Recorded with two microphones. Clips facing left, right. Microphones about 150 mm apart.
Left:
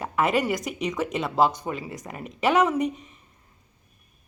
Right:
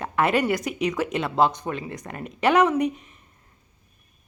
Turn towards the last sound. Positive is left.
turn(degrees=0)  # may be behind; listen again after turning